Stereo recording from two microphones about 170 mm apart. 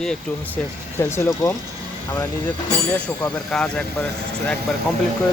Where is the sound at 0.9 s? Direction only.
15° left (ahead or behind).